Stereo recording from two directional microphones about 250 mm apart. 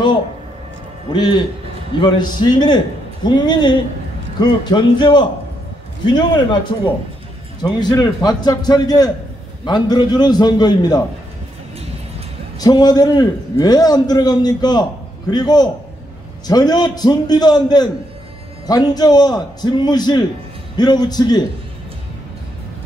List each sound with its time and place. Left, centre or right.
1.1 s a man's voice: centre
12.5 s a man's voice: centre